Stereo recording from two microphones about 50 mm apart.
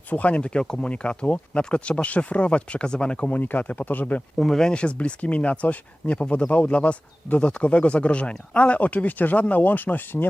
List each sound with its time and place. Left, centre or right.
0.1 s speech: left
3.3 s speech: left
4.4 s speech: centre
4.7 s speech: left